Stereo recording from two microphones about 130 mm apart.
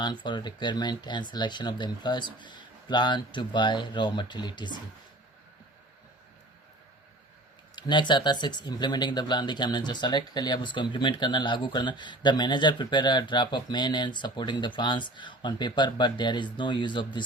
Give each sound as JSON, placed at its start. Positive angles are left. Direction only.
{"t": 0.0, "sound": "speech", "side_deg": 35}
{"t": 7.8, "sound": "speech", "side_deg": 35}